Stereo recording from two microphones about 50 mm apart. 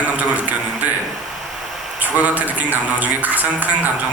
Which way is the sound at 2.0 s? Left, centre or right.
Right.